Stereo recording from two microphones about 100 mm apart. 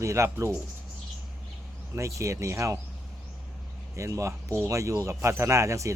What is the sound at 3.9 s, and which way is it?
Speech, 30° right (ahead or behind).